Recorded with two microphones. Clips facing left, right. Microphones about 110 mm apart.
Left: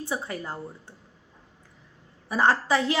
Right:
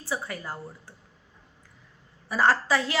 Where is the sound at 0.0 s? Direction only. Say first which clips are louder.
Left 1 dB; 25° left (ahead or behind).